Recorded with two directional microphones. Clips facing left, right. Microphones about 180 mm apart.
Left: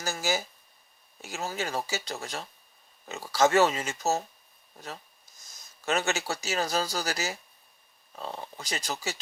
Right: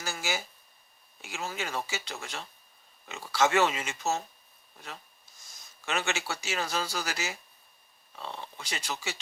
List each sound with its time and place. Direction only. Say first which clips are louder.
0.0 s a sound: left 4 dB; 40° left (ahead or behind)
1.2 s speech: left 3 dB; 40° left (ahead or behind)
5.8 s speech: left 4 dB; 40° left (ahead or behind)